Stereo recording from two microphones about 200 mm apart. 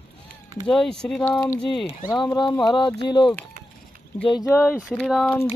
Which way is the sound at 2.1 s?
20° left (ahead or behind).